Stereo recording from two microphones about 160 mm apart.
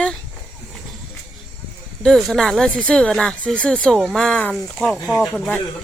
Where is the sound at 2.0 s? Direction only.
Centre (ahead or behind).